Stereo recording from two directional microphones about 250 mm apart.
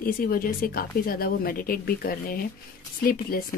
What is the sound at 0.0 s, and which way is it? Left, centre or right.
Speech, left.